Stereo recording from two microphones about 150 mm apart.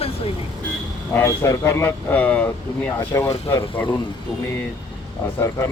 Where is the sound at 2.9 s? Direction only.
20° left (ahead or behind).